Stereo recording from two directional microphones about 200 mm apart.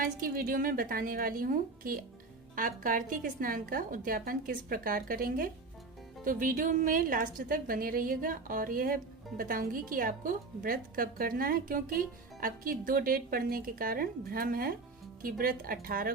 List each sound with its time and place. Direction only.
0.0 s a woman's voice: 45° right (ahead or behind)